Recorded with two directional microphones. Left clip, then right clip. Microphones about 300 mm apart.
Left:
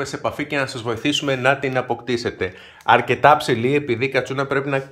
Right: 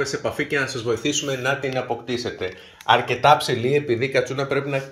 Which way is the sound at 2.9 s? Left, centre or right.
Centre.